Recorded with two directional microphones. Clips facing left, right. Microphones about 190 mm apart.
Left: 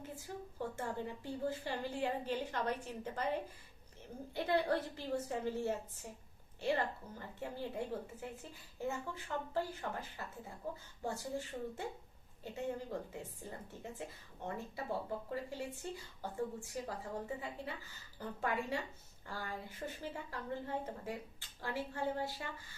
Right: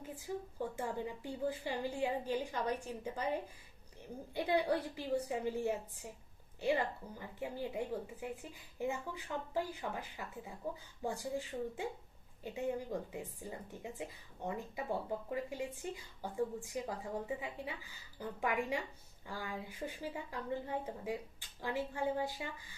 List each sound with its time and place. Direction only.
0.8 s a woman's voice: 15° right (ahead or behind)
4.4 s a woman's voice: 15° right (ahead or behind)